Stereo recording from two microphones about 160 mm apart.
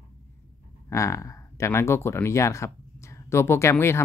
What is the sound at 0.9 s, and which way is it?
Speech, 20° left (ahead or behind).